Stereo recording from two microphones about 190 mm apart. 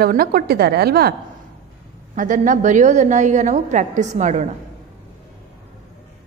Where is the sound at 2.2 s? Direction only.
40° right (ahead or behind).